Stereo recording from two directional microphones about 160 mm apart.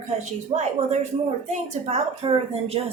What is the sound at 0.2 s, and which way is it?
Speech, 45° right (ahead or behind).